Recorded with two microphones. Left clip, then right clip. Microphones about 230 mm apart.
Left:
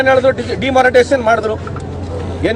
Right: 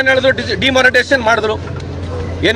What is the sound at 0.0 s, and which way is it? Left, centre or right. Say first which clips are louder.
A man's voice: left 1 dB; centre.